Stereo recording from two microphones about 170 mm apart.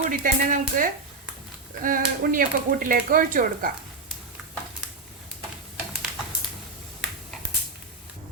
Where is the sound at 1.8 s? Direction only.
55° right (ahead or behind).